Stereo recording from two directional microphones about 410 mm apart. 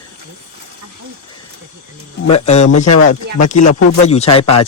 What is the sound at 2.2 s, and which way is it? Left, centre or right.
Speech, centre.